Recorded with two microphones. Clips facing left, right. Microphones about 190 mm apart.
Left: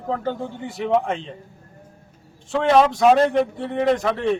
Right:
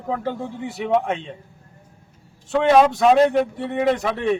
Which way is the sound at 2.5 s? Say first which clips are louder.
Right 1 dB; 5° right (ahead or behind).